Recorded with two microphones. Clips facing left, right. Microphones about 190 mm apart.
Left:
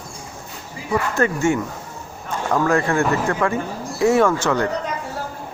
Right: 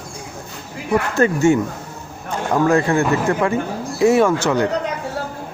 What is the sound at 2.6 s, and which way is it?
A man's voice, 25° right (ahead or behind).